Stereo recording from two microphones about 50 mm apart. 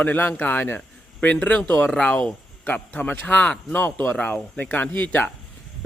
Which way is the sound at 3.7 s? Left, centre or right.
Left.